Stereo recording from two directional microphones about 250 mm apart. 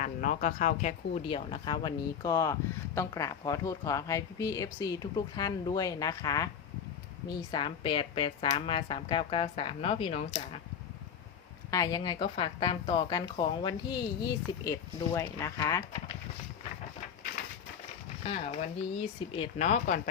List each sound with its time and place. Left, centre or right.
0.0 s speech: left
11.7 s speech: centre
18.3 s speech: left